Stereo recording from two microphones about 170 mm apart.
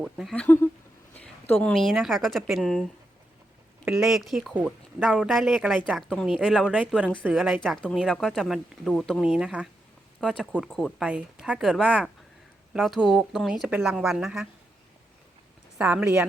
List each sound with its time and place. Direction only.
0.0 s speech: centre (ahead or behind)
0.4 s speech: 10° left (ahead or behind)
3.8 s speech: 5° right (ahead or behind)
7.1 s speech: 5° left (ahead or behind)
15.8 s speech: 10° right (ahead or behind)